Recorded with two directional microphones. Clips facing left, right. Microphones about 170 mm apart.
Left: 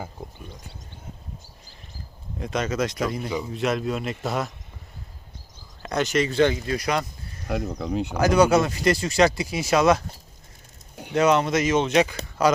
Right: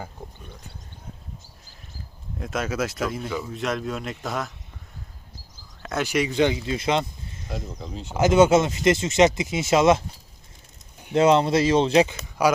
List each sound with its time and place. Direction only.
2.4 s speech: 5° right (ahead or behind)
3.2 s speech: 15° left (ahead or behind)
3.5 s speech: centre (ahead or behind)
5.8 s speech: 5° right (ahead or behind); by 7.4 s 25° right (ahead or behind)
7.4 s speech: 65° left (ahead or behind)
8.1 s speech: 25° right (ahead or behind)
11.1 s speech: 25° right (ahead or behind)
12.4 s speech: 10° right (ahead or behind)